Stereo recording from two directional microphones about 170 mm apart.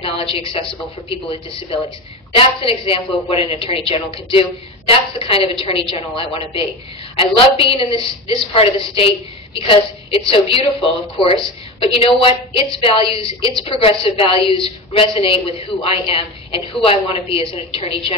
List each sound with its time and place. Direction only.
0.0 s a woman's voice: 35° left (ahead or behind)
2.3 s a woman's voice: 30° left (ahead or behind)